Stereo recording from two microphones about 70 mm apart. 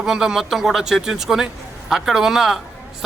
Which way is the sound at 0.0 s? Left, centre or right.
Centre.